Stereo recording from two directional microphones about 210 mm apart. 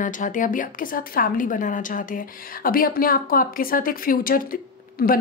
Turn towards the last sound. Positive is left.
turn(degrees=45)  # may be behind; listen again after turning